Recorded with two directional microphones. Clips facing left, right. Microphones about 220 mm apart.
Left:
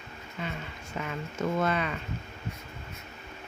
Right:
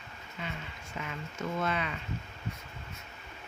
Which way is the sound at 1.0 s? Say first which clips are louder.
Left 5 dB; 45° left (ahead or behind).